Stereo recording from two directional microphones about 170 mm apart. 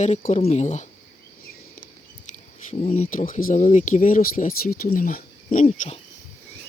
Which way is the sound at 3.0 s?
50° left (ahead or behind).